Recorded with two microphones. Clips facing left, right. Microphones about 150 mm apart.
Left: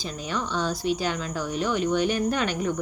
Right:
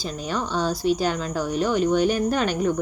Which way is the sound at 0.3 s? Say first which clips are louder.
Right 3 dB; 40° right (ahead or behind).